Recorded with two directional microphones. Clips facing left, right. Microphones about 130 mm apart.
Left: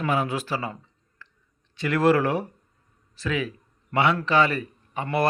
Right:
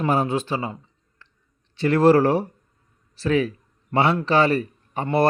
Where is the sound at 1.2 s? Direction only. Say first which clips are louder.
Left 4 dB; 25° right (ahead or behind).